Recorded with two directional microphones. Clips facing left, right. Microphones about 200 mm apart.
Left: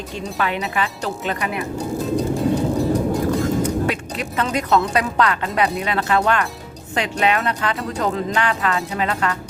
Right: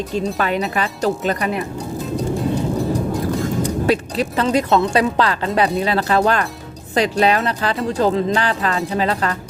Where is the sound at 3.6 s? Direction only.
35° right (ahead or behind).